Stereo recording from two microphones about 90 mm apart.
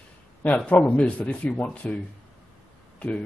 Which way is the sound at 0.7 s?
15° left (ahead or behind).